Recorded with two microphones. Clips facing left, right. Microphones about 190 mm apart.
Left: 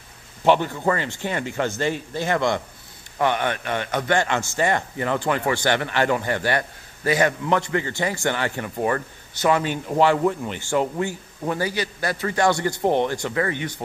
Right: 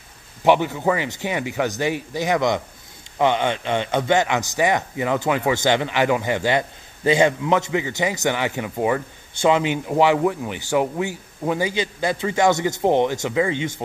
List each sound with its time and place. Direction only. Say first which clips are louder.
0.4 s speech: right 1 dB; 10° right (ahead or behind)